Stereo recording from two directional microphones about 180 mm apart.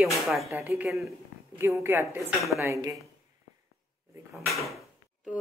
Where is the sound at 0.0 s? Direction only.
Centre (ahead or behind).